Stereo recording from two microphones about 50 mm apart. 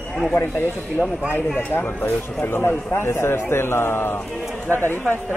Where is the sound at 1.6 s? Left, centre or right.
Left.